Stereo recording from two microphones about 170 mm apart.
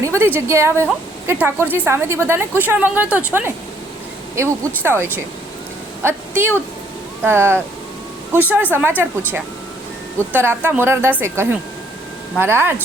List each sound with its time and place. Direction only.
0.0 s a woman's voice: 15° right (ahead or behind)